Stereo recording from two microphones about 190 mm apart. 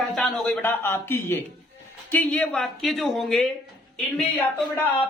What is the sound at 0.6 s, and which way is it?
Speech, 15° left (ahead or behind).